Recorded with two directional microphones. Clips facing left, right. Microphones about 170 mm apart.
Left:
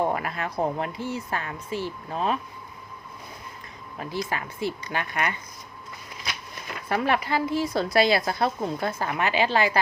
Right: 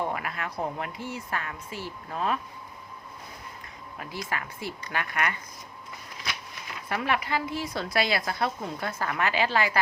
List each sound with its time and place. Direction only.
0.0 s a woman's voice: 35° left (ahead or behind)
3.9 s speech: 30° left (ahead or behind)
6.8 s a woman's voice: 35° left (ahead or behind)